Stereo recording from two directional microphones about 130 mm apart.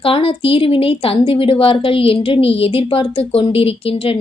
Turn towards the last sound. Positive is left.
turn(degrees=45)  # may be behind; listen again after turning